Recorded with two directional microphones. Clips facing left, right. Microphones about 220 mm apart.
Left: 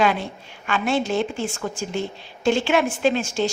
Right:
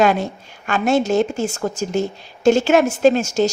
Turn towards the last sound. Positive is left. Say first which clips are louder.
# right 6 dB
turn(degrees=-40)  # may be behind; listen again after turning